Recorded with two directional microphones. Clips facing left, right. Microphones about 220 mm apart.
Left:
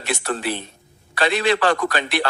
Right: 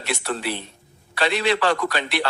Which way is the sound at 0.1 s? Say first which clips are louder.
Left 2 dB; 45° left (ahead or behind).